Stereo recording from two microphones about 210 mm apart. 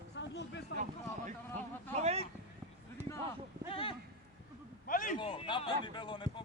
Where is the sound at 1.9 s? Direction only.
30° right (ahead or behind).